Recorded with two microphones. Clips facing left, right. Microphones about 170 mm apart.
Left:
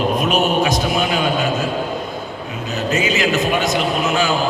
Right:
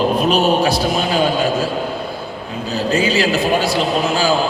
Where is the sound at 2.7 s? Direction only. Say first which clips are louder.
Right 3 dB; 35° right (ahead or behind).